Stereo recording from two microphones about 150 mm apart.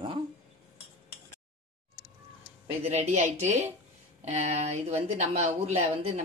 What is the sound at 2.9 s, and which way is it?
Speech, 50° right (ahead or behind).